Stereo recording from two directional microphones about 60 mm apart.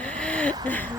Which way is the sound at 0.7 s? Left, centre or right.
Left.